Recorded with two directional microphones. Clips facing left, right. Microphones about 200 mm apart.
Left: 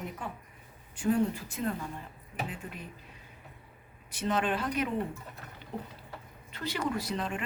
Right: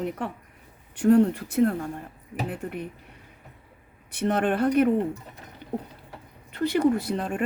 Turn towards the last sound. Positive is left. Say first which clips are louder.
# right 7 dB
turn(degrees=-55)  # may be behind; listen again after turning